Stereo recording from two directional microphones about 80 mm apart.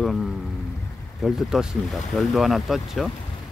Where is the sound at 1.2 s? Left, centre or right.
Centre.